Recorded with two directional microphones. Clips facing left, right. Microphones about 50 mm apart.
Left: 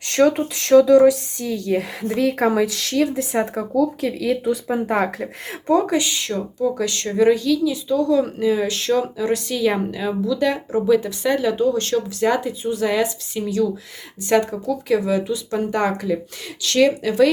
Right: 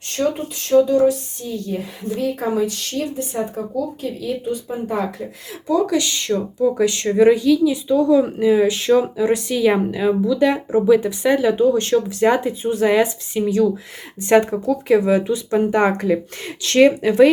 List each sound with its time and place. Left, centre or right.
0.0 s speech: left
5.0 s speech: left
5.8 s speech: left
6.1 s speech: centre
6.3 s speech: centre
15.9 s speech: right
16.6 s speech: right